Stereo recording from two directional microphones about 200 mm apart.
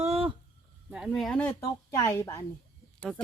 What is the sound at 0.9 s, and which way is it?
Speech, centre (ahead or behind).